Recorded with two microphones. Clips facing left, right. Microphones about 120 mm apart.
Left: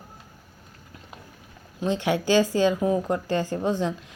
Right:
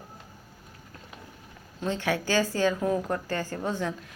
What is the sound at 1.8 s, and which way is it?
A woman's voice, 15° left (ahead or behind).